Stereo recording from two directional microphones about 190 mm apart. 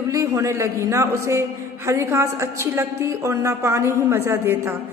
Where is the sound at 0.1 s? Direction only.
15° right (ahead or behind).